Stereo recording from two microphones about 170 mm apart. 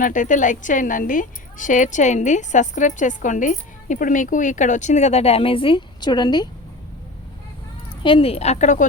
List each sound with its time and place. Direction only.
0.0 s speech: 50° left (ahead or behind); by 6.5 s 25° left (ahead or behind)
8.0 s speech: 30° left (ahead or behind)